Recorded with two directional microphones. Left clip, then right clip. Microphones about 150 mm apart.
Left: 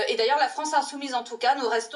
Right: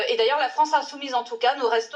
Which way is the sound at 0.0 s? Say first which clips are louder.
Right 1 dB; 35° left (ahead or behind).